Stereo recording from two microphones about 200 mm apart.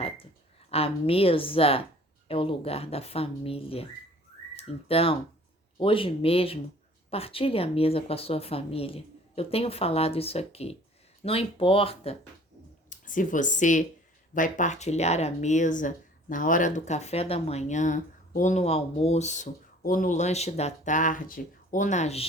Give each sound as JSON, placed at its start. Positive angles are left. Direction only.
{"t": 0.7, "sound": "speech", "side_deg": 30}
{"t": 12.9, "sound": "speech", "side_deg": 40}